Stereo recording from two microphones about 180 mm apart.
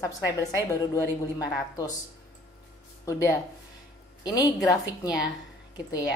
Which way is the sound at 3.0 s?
15° left (ahead or behind).